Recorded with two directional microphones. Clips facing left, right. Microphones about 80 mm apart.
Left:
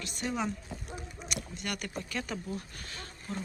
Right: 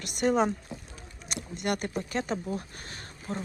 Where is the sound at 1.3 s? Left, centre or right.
Right.